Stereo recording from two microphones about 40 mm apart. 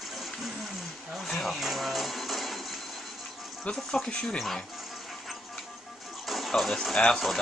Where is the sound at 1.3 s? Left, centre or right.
Centre.